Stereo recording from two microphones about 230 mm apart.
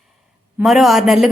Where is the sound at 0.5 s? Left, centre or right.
Centre.